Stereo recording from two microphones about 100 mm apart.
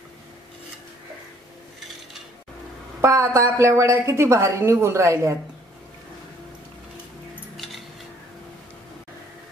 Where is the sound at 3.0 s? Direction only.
30° right (ahead or behind).